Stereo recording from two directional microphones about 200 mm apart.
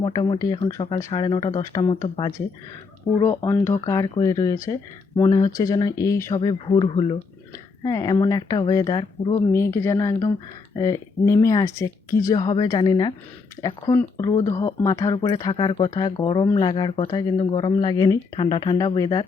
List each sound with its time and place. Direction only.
0.0 s speech: 25° left (ahead or behind)
3.2 s speech: 15° left (ahead or behind)